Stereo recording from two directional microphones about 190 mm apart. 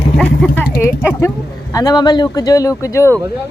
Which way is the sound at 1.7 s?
20° left (ahead or behind).